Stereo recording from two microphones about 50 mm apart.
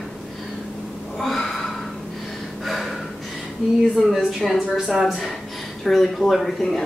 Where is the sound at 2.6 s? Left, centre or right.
Centre.